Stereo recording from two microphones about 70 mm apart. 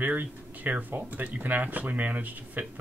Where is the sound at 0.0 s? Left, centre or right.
Right.